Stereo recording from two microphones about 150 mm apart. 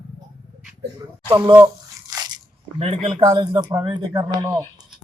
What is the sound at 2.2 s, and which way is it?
Biting, 25° right (ahead or behind).